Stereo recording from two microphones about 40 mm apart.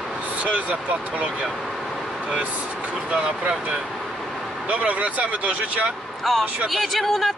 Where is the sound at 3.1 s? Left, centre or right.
Right.